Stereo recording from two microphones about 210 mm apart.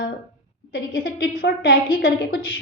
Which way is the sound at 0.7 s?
45° left (ahead or behind).